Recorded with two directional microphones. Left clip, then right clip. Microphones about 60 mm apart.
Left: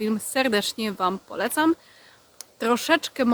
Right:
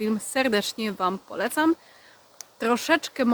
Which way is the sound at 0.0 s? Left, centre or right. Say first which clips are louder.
Left 1 dB; left.